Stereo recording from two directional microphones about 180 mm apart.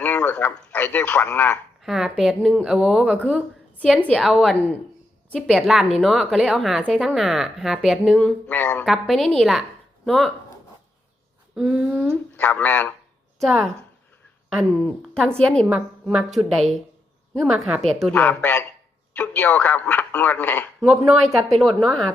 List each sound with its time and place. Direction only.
0.0 s a sound: 10° left (ahead or behind)
1.8 s a woman's voice: centre (ahead or behind)
3.8 s a woman's voice: 5° left (ahead or behind)
11.5 s a sound: 5° right (ahead or behind)
12.4 s speech: 10° left (ahead or behind)
14.6 s a woman's voice: centre (ahead or behind)